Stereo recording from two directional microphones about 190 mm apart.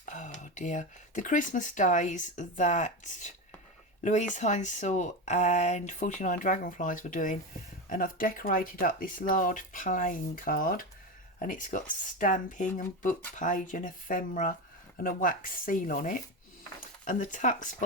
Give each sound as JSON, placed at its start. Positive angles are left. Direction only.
{"t": 0.0, "sound": "speech", "side_deg": 40}